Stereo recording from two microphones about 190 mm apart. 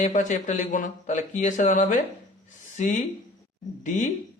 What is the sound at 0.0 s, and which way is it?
Speech, 40° left (ahead or behind).